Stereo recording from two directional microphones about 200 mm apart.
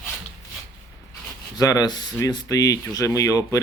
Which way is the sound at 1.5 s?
20° left (ahead or behind).